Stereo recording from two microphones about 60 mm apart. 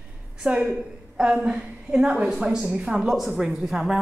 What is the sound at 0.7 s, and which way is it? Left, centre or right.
A woman's voice, centre.